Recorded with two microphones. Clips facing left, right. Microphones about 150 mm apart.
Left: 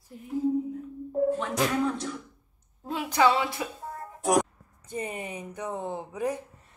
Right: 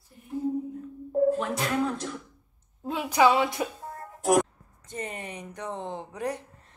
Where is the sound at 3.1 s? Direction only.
15° right (ahead or behind).